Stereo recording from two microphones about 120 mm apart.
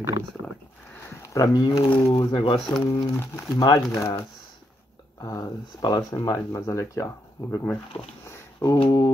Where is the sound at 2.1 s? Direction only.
40° left (ahead or behind).